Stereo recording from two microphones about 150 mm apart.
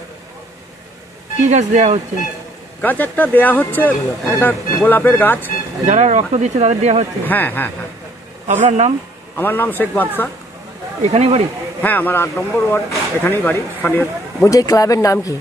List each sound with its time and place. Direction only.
1.4 s speech: 50° right (ahead or behind)
2.8 s speech: 10° left (ahead or behind)
5.9 s speech: 50° right (ahead or behind)
7.2 s speech: 15° left (ahead or behind)
8.5 s speech: 50° right (ahead or behind)
9.4 s speech: 15° left (ahead or behind)
11.0 s speech: 45° right (ahead or behind)
11.8 s speech: 10° left (ahead or behind)